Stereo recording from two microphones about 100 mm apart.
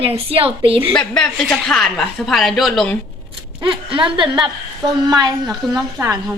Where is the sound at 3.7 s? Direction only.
60° right (ahead or behind); by 5.3 s 40° right (ahead or behind).